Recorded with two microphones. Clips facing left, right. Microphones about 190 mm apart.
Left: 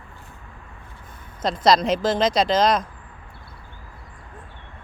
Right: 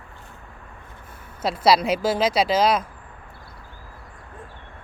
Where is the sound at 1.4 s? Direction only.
10° right (ahead or behind).